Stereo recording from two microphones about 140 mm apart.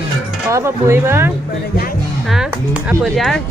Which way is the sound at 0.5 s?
20° right (ahead or behind).